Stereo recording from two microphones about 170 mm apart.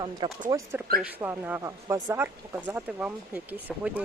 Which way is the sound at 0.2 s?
30° right (ahead or behind).